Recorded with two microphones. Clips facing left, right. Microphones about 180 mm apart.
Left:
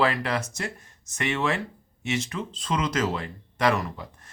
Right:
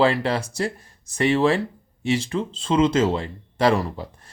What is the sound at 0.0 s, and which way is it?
Speech, 30° right (ahead or behind).